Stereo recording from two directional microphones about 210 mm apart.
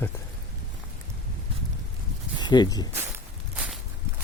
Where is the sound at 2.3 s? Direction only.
20° left (ahead or behind).